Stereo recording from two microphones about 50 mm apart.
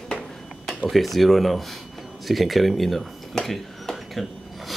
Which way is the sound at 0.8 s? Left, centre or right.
Centre.